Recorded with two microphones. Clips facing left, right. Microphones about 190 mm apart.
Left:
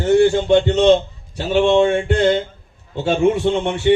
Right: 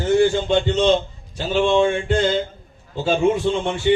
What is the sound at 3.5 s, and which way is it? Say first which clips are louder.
Speech: left 3 dB; 65° left (ahead or behind).